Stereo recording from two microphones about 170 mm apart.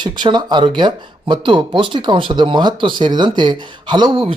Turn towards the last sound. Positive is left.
turn(degrees=-30)  # may be behind; listen again after turning